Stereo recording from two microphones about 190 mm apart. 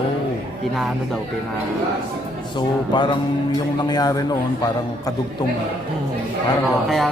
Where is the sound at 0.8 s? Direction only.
Centre (ahead or behind).